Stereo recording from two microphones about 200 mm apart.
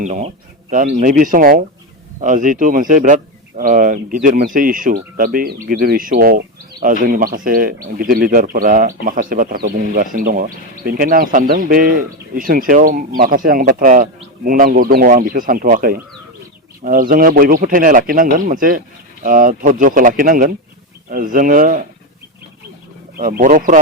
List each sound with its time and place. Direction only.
0.0 s speech: 35° right (ahead or behind)
23.1 s speech: 45° right (ahead or behind)